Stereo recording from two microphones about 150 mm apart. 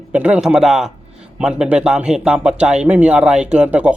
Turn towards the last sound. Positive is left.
turn(degrees=-10)  # may be behind; listen again after turning